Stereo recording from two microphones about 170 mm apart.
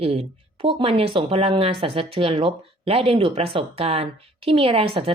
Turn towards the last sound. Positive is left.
turn(degrees=-35)  # may be behind; listen again after turning